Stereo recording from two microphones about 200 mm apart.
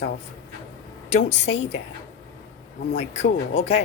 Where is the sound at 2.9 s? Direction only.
35° left (ahead or behind).